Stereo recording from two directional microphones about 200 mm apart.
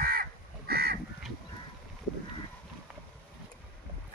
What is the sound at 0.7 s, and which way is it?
Crow, 50° right (ahead or behind).